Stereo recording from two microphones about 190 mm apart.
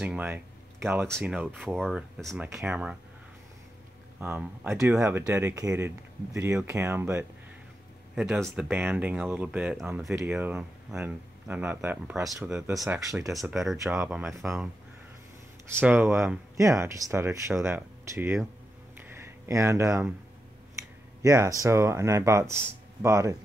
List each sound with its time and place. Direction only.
0.0 s a sound: 10° right (ahead or behind)
1.2 s speech: 5° right (ahead or behind)
4.2 s speech: 10° right (ahead or behind)
16.5 s speech: 15° right (ahead or behind)
19.0 s a sound: 15° right (ahead or behind)
21.2 s speech: 15° right (ahead or behind)